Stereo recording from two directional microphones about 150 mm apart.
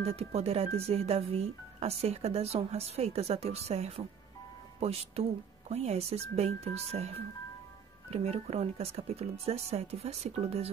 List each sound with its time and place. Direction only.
0.0 s speech: 45° right (ahead or behind)